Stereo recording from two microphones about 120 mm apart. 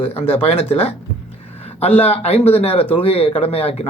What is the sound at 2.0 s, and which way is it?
A man's voice, 55° left (ahead or behind).